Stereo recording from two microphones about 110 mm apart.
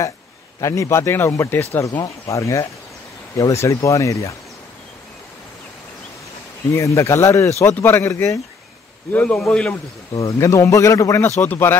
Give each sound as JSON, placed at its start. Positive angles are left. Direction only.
{"t": 0.6, "sound": "speech", "side_deg": 30}
{"t": 6.7, "sound": "speech", "side_deg": 30}
{"t": 9.1, "sound": "a man's voice", "side_deg": 10}
{"t": 10.1, "sound": "speech", "side_deg": 30}